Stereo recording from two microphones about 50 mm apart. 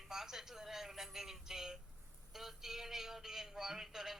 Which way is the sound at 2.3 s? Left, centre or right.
Centre.